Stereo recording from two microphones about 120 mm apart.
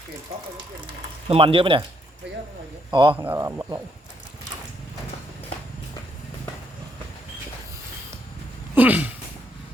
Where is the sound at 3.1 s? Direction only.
15° right (ahead or behind).